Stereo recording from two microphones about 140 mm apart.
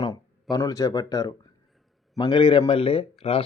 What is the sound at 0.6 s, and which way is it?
Speech, 25° left (ahead or behind).